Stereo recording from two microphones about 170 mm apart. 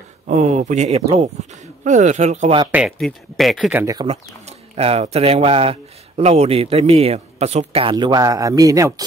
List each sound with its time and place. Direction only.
0.3 s speech: 45° right (ahead or behind)
2.7 s speech: centre (ahead or behind)
3.8 s speech: 20° right (ahead or behind)
4.1 s speech: 40° right (ahead or behind); by 9.0 s 20° right (ahead or behind)